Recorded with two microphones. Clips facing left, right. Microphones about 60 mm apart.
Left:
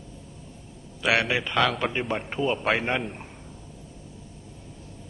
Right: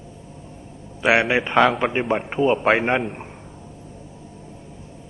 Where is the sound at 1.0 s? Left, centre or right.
Right.